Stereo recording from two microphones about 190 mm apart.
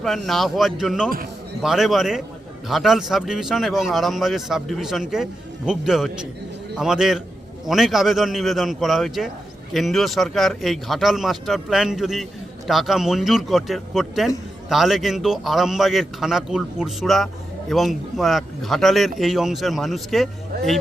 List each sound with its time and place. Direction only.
0.0 s speech: centre (ahead or behind)
20.5 s speech: 55° right (ahead or behind)